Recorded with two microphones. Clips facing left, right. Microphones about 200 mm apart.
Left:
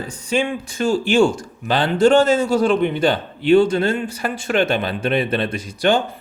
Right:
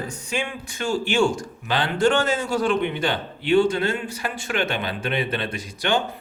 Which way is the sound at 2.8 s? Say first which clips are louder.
Left 6 dB; 40° left (ahead or behind).